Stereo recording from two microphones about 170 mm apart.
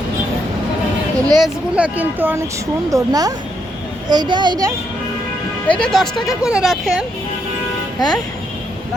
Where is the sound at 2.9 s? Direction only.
20° right (ahead or behind).